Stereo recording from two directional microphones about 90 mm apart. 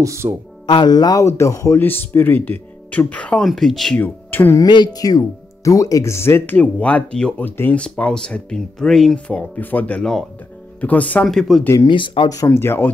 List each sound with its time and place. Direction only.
0.0 s speech: 30° right (ahead or behind)
0.7 s speech: 55° left (ahead or behind)
1.2 s speech: 30° left (ahead or behind)
1.8 s speech: 20° left (ahead or behind)
3.3 s speech: 5° left (ahead or behind)
3.9 s speech: 20° left (ahead or behind)
4.6 s speech: 55° left (ahead or behind); by 7.4 s 10° left (ahead or behind)
7.4 s speech: 20° left (ahead or behind)
11.2 s speech: centre (ahead or behind)
11.9 s speech: 70° left (ahead or behind)
12.4 s speech: 25° left (ahead or behind)